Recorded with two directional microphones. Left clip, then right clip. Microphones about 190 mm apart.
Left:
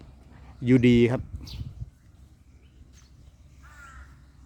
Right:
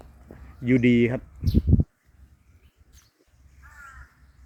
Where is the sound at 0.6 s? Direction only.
30° left (ahead or behind).